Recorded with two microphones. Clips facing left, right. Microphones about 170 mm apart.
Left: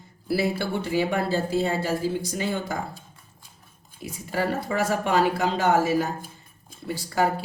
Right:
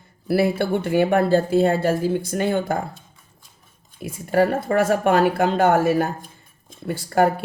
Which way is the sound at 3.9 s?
55° right (ahead or behind).